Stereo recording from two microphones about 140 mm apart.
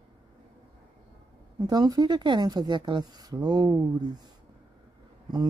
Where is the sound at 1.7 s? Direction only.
30° right (ahead or behind).